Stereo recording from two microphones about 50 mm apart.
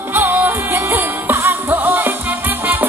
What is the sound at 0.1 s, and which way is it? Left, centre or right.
Music, right.